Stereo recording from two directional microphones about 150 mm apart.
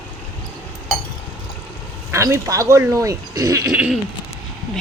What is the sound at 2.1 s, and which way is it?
Speech, 20° right (ahead or behind).